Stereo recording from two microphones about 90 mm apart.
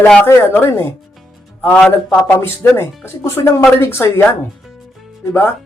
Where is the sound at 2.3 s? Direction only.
25° left (ahead or behind).